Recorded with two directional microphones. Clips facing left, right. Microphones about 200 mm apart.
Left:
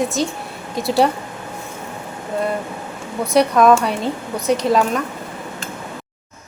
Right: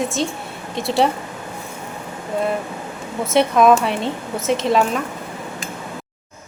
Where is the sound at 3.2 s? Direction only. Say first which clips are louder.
Left 1 dB; centre (ahead or behind).